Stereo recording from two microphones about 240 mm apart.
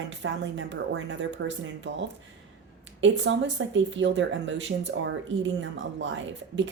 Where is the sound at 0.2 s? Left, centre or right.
Right.